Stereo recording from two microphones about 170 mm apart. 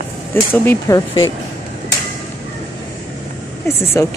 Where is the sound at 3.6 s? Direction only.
15° left (ahead or behind).